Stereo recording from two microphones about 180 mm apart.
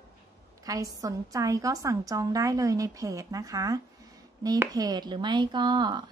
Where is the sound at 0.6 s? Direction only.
20° right (ahead or behind).